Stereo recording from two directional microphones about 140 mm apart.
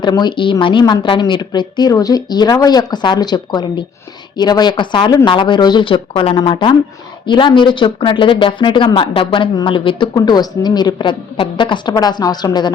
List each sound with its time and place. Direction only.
0.0 s speech: 30° left (ahead or behind)